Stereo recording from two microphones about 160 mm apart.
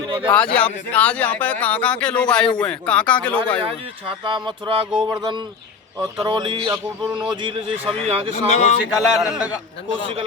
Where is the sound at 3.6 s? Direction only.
30° right (ahead or behind).